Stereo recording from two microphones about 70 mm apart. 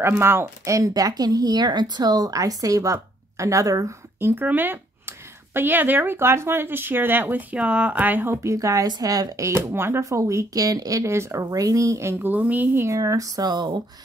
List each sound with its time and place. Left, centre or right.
0.0 s speech: right
0.7 s speech: right
4.2 s speech: right
7.5 s speech: centre
8.4 s speech: right
9.5 s speech: right
12.2 s speech: right
12.8 s speech: right
13.4 s speech: right